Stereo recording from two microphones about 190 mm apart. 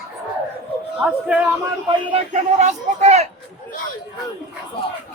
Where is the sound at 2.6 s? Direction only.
35° right (ahead or behind).